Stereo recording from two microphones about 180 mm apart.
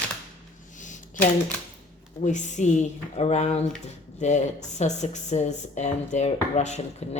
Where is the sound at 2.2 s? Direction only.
40° left (ahead or behind).